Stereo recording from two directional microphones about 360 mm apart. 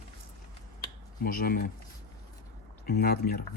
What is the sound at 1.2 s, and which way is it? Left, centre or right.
Speech, left.